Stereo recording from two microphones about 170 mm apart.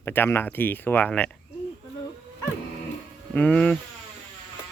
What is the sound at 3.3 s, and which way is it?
Speech, 10° left (ahead or behind).